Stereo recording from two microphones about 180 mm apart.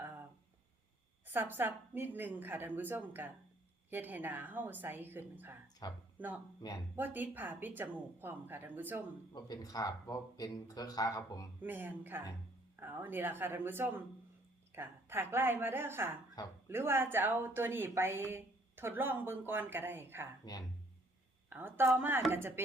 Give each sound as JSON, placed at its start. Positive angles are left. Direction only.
{"t": 1.3, "sound": "a woman's voice", "side_deg": -10}
{"t": 5.8, "sound": "speech", "side_deg": 25}
{"t": 6.1, "sound": "a woman's voice", "side_deg": -10}
{"t": 9.3, "sound": "speech", "side_deg": 20}
{"t": 11.6, "sound": "a woman's voice", "side_deg": -10}
{"t": 20.4, "sound": "speech", "side_deg": 20}
{"t": 21.5, "sound": "a woman's voice", "side_deg": -10}